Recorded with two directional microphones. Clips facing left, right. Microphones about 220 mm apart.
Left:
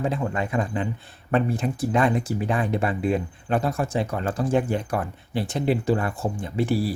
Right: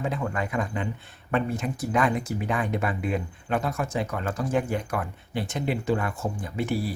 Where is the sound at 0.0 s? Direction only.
30° left (ahead or behind).